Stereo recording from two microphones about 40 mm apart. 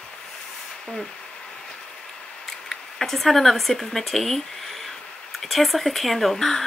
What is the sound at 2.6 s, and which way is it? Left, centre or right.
Speech, centre.